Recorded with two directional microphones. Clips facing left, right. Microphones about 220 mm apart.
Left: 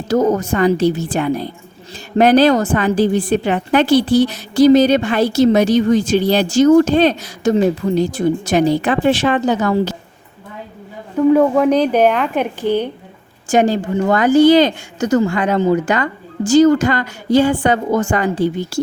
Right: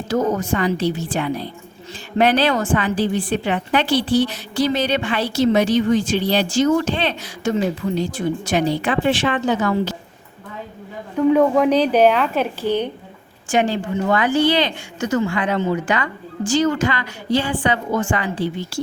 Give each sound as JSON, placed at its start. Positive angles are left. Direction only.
{"t": 0.1, "sound": "a woman's voice", "side_deg": 40}
{"t": 11.2, "sound": "speech", "side_deg": 5}
{"t": 13.5, "sound": "a woman's voice", "side_deg": 40}